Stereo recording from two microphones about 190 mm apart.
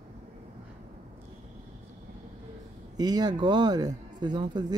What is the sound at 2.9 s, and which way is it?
Speech, 20° right (ahead or behind).